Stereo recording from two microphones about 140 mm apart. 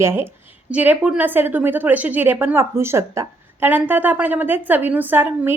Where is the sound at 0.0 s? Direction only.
15° right (ahead or behind).